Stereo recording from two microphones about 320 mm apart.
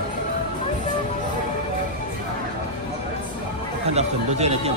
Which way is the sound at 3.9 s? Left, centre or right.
Centre.